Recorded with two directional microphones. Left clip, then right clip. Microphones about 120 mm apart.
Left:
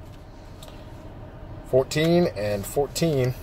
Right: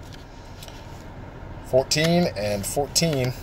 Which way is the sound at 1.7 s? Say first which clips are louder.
Even; 50° left (ahead or behind).